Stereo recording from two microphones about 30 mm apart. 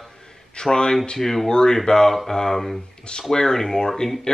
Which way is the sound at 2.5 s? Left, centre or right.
Centre.